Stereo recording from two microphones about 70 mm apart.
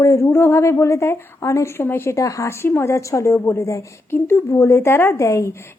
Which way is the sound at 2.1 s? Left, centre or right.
Left.